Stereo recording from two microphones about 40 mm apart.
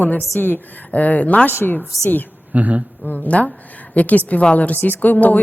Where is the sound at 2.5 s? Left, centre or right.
Right.